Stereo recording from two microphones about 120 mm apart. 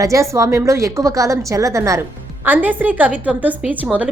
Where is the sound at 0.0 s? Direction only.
25° right (ahead or behind).